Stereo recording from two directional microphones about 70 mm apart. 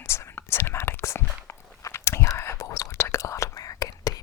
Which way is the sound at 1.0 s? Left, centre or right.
Left.